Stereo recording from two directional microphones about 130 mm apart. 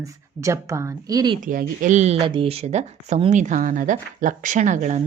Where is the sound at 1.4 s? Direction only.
90° right.